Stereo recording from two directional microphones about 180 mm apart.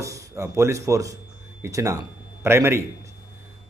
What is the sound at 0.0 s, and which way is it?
Speech, 15° right (ahead or behind).